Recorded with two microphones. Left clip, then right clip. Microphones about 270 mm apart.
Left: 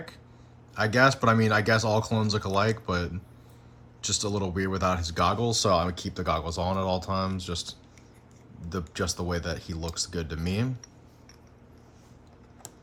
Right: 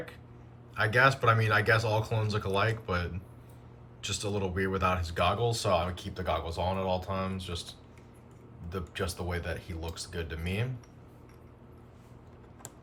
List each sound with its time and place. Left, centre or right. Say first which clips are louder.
0.7 s speech: left 2 dB; centre
8.7 s speech: left 4 dB; left